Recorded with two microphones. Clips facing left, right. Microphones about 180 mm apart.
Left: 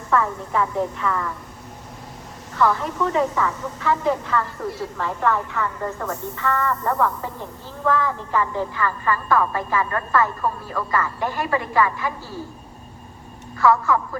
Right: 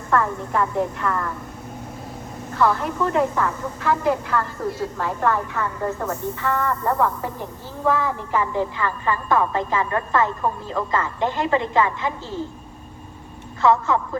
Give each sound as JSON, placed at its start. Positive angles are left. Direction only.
{"t": 0.1, "sound": "a woman's voice", "side_deg": 0}
{"t": 2.6, "sound": "a woman's voice", "side_deg": -5}
{"t": 13.6, "sound": "a woman's voice", "side_deg": -20}